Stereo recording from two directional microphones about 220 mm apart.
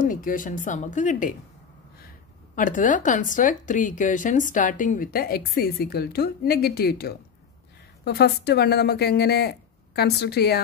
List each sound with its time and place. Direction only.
0.0 s speech: 40° left (ahead or behind)
2.5 s a woman's voice: 35° left (ahead or behind)